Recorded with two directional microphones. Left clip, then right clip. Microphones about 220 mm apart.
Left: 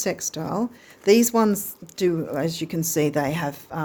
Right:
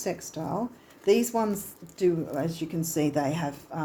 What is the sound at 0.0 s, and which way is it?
Speech, 45° left (ahead or behind).